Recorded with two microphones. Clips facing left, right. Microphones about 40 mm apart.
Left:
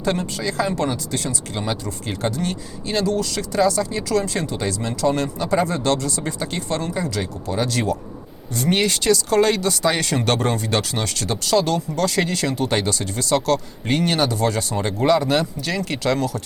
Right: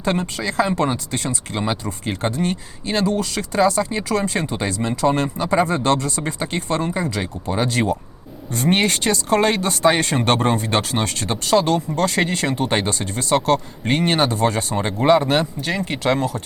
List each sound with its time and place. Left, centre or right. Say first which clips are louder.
0.0 s speech: right 1 dB; right